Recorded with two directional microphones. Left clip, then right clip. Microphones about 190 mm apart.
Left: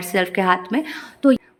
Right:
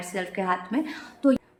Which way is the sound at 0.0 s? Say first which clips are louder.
Left 10 dB; 35° left (ahead or behind).